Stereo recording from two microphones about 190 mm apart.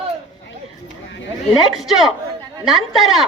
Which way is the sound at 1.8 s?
Centre (ahead or behind).